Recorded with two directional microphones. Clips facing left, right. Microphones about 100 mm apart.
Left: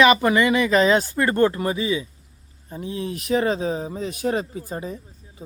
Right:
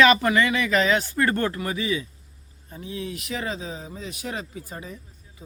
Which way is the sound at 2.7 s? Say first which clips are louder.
Left 4 dB; 35° left (ahead or behind).